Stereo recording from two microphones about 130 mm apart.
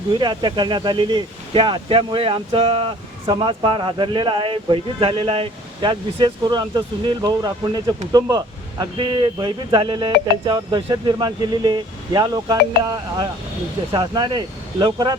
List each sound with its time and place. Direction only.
0.1 s speech: 35° right (ahead or behind)